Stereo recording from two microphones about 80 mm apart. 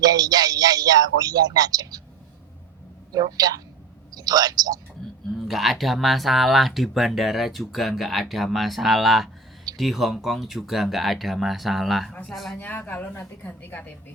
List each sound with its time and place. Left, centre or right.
0.0 s a man's voice: right
3.1 s speech: right
5.3 s speech: centre
12.5 s a woman's voice: left